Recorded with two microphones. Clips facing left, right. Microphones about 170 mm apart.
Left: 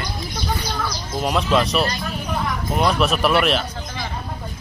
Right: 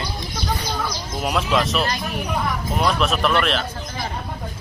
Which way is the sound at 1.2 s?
Centre (ahead or behind).